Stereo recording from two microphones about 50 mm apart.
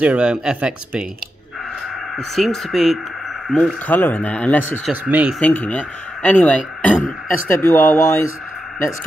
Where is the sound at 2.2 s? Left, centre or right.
Centre.